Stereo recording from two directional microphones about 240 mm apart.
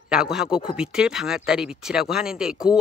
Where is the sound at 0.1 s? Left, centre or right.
Centre.